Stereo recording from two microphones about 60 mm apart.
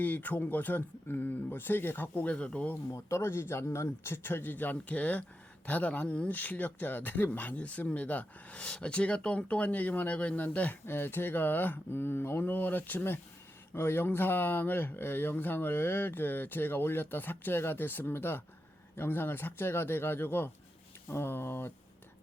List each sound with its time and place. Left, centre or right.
0.0 s speech: left
2.9 s speech: left
10.8 s speech: left